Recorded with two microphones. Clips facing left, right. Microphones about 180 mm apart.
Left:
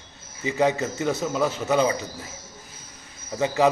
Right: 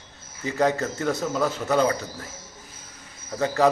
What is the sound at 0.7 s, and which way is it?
Speech, 15° left (ahead or behind).